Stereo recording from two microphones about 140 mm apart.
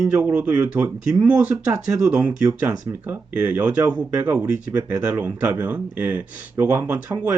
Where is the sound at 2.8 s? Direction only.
15° right (ahead or behind).